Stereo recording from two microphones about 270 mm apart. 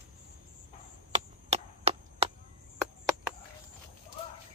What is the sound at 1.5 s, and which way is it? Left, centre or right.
Chop, right.